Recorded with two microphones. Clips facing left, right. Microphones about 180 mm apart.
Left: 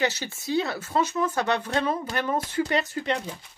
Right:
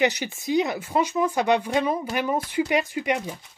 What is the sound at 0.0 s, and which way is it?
Speech, 15° right (ahead or behind).